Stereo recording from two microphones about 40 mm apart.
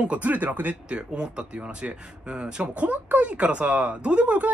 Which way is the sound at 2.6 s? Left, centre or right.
Right.